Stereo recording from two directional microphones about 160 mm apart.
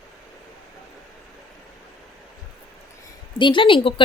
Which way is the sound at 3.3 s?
30° left (ahead or behind).